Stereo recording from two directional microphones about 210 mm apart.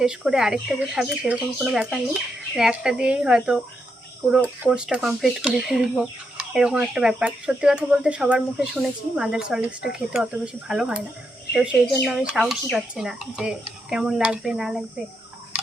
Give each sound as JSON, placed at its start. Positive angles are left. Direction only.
{"t": 0.0, "sound": "speech", "side_deg": -5}
{"t": 4.6, "sound": "speech", "side_deg": -5}